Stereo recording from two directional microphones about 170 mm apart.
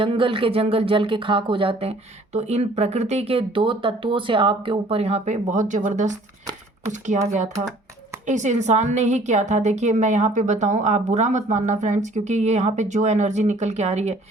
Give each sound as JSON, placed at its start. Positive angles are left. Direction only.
{"t": 0.0, "sound": "a woman's voice", "side_deg": -30}